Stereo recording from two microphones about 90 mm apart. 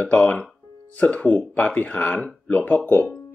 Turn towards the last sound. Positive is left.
turn(degrees=20)  # may be behind; listen again after turning